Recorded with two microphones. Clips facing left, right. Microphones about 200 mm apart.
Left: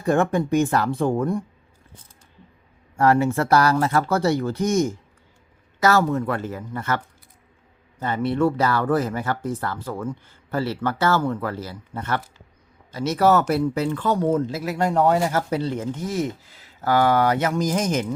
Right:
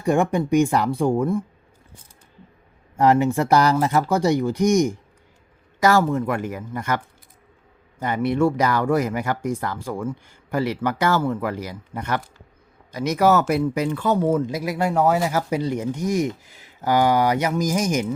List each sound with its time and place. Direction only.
0.0 s speech: 15° right (ahead or behind)
3.0 s speech: 20° right (ahead or behind)